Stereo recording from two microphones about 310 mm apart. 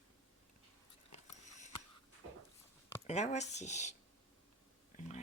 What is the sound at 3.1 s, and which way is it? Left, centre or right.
Speech, left.